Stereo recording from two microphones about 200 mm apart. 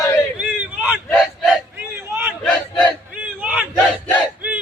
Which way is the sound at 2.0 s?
10° right (ahead or behind).